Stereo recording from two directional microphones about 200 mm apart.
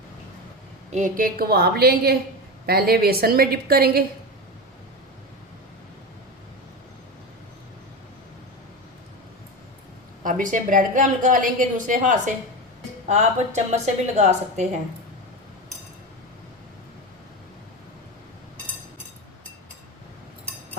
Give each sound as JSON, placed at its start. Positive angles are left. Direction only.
{"t": 0.9, "sound": "a woman's voice", "side_deg": -40}
{"t": 10.2, "sound": "a woman's voice", "side_deg": -40}